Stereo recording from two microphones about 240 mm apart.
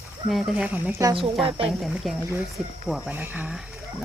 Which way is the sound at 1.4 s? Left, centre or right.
Right.